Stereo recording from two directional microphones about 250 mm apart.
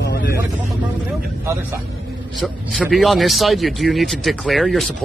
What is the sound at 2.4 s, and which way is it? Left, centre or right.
Speech, centre.